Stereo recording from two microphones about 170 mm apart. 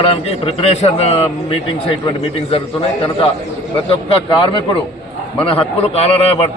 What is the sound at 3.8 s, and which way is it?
A man's voice, 35° left (ahead or behind).